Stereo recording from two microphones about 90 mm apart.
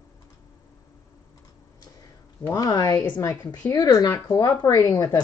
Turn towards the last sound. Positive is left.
turn(degrees=45)  # may be behind; listen again after turning